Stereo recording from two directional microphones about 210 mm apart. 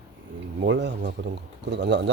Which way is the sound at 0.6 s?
55° right (ahead or behind).